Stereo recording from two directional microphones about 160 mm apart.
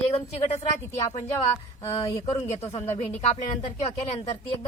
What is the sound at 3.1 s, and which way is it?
A woman's voice, 40° left (ahead or behind).